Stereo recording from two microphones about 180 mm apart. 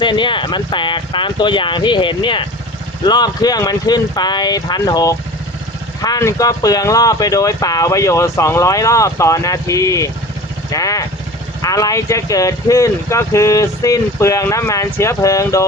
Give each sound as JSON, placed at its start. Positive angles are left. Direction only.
{"t": 0.0, "sound": "speech", "side_deg": 25}